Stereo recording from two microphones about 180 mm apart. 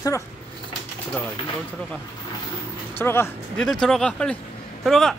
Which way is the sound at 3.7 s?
Centre (ahead or behind).